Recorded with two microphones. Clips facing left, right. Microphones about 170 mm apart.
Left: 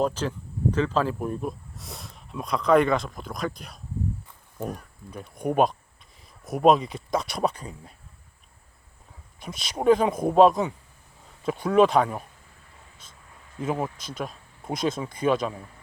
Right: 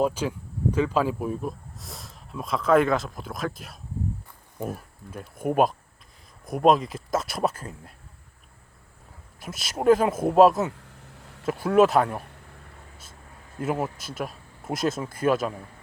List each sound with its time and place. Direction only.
0.0 s speech: 10° right (ahead or behind)
9.4 s speech: 5° right (ahead or behind)
10.8 s a sound: 85° right
11.4 s speech: 5° right (ahead or behind)
13.6 s speech: 5° right (ahead or behind)